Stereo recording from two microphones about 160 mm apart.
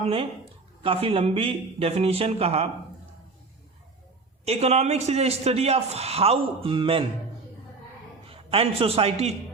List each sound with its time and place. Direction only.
0.8 s a man's voice: 35° right (ahead or behind)
4.4 s a man's voice: 40° right (ahead or behind)
8.3 s a man's voice: 35° right (ahead or behind)